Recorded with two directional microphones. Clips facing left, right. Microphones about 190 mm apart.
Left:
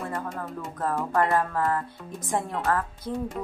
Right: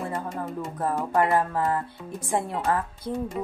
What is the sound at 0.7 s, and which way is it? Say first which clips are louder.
A woman's voice: right 1 dB; 15° right (ahead or behind).